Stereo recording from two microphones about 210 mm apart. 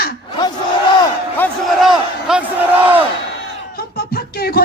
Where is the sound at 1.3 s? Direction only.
5° left (ahead or behind).